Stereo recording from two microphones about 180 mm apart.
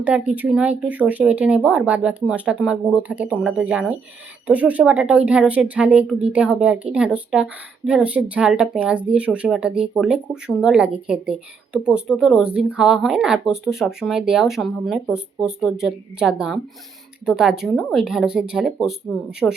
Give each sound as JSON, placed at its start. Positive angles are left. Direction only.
{"t": 0.0, "sound": "speech", "side_deg": -10}